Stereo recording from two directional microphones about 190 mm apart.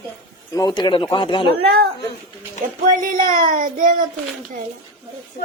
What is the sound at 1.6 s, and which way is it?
Speech, 55° right (ahead or behind).